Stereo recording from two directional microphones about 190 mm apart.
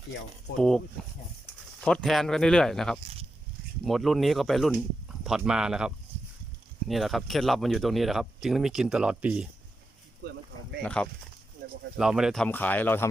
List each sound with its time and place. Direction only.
1.8 s speech: 5° left (ahead or behind)
10.2 s speech: 60° right (ahead or behind)
10.8 s speech: 5° left (ahead or behind)